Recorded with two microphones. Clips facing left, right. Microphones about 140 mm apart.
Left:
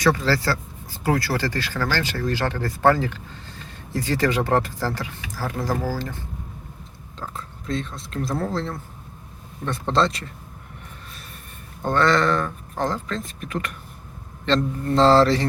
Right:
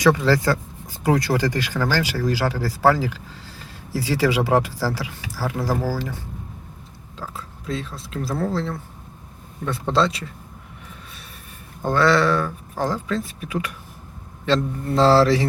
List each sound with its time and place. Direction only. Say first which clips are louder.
0.0 s speech: right 3 dB; 15° right (ahead or behind)
7.2 s speech: even; 5° right (ahead or behind)
11.8 s speech: right 2 dB; 10° right (ahead or behind)